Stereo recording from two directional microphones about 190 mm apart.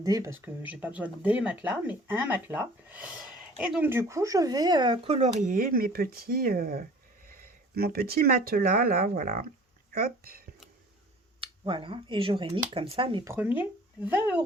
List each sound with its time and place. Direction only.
0.0 s speech: 15° right (ahead or behind); by 9.4 s 50° right (ahead or behind)
11.3 s speech: 25° right (ahead or behind)
13.2 s speech: 10° right (ahead or behind)